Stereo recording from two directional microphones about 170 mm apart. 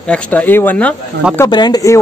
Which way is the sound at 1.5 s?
25° left (ahead or behind).